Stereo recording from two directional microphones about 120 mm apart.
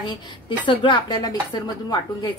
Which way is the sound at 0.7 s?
40° left (ahead or behind).